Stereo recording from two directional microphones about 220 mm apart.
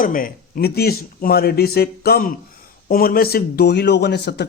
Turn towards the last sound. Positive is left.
turn(degrees=50)  # may be behind; listen again after turning